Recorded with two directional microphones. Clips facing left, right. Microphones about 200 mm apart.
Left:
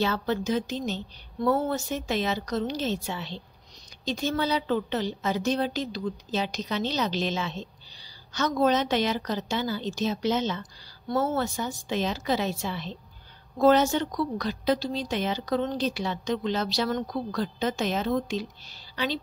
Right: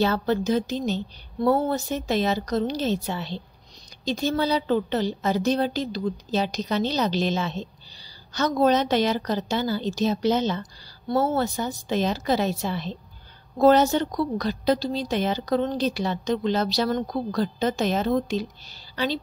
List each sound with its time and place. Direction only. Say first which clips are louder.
0.0 s a woman's voice: right 4 dB; 40° right (ahead or behind)